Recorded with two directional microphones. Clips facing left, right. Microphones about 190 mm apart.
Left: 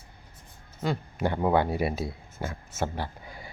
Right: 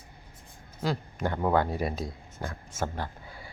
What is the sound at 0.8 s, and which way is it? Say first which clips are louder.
Speech: left 2 dB; centre (ahead or behind).